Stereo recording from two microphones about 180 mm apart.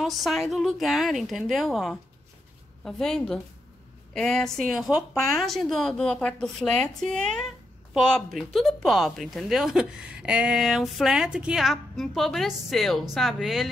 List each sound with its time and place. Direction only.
0.0 s speech: centre (ahead or behind)